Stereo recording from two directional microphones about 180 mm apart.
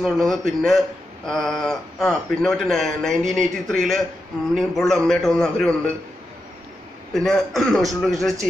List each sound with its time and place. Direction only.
0.0 s a man's voice: centre (ahead or behind)
7.2 s a man's voice: centre (ahead or behind)